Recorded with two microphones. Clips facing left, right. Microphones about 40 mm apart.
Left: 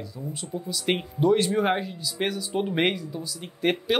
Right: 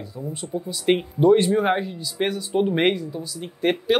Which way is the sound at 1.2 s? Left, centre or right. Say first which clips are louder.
Right 4 dB; centre.